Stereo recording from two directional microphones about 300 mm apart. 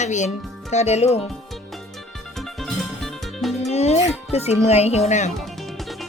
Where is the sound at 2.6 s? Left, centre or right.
Centre.